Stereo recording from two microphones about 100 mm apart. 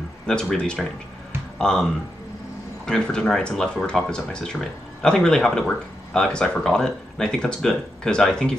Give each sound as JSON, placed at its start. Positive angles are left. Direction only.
{"t": 0.3, "sound": "speech", "side_deg": 10}